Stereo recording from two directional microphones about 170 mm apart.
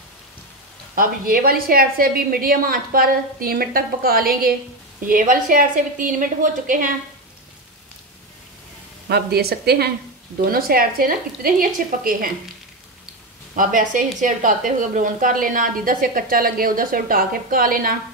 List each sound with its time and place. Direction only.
0.9 s a woman's voice: 55° right (ahead or behind)
9.1 s a woman's voice: 70° right (ahead or behind)
13.6 s a woman's voice: 50° right (ahead or behind)